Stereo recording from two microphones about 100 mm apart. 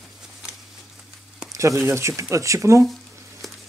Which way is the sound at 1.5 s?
30° right (ahead or behind).